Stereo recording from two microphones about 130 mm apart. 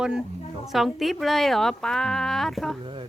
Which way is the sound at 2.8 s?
40° right (ahead or behind).